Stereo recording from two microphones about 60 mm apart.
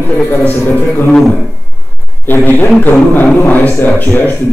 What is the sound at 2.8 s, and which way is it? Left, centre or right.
Speech, left.